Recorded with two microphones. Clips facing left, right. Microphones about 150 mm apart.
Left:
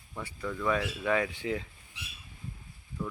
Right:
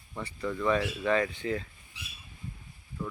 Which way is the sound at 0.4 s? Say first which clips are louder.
Right 2 dB; centre (ahead or behind).